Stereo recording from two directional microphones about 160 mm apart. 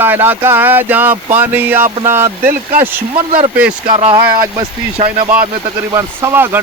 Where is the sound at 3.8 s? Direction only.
35° right (ahead or behind).